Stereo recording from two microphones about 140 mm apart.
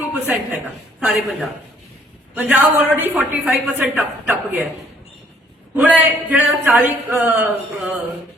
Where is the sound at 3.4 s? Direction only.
Centre (ahead or behind).